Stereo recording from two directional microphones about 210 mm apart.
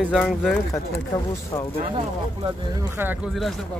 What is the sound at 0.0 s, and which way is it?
Speech, 5° left (ahead or behind).